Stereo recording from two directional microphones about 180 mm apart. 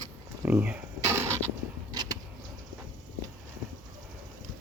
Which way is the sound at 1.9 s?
20° right (ahead or behind).